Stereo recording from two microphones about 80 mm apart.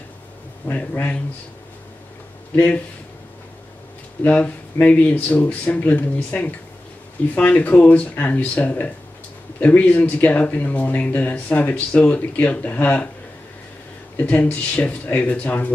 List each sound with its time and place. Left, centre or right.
0.7 s speech: centre
2.5 s speech: centre
4.2 s speech: centre
14.1 s speech: centre